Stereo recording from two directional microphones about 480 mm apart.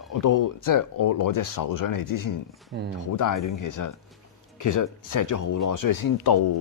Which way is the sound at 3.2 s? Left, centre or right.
Left.